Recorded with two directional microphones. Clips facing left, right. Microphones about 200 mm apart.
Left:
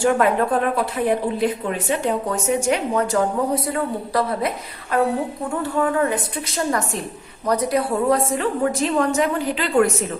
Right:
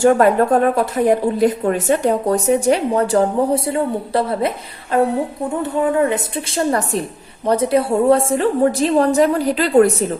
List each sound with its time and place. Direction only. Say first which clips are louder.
0.0 s a woman's voice: right 5 dB; 45° right (ahead or behind)